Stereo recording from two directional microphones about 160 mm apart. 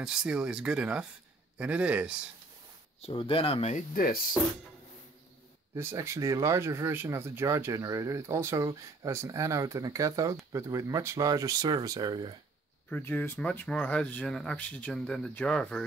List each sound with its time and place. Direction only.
0.0 s speech: 5° right (ahead or behind)
3.0 s speech: 35° left (ahead or behind)
3.9 s speech: 60° left (ahead or behind)
5.8 s speech: 15° right (ahead or behind)
12.9 s speech: 10° left (ahead or behind)